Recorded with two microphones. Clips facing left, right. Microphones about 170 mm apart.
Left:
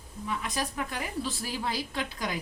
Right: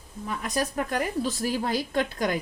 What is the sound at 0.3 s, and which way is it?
A woman's voice, 45° right (ahead or behind).